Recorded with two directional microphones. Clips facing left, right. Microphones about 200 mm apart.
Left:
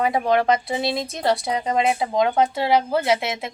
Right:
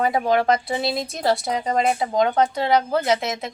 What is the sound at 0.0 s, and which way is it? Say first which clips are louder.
Speech: even; centre (ahead or behind).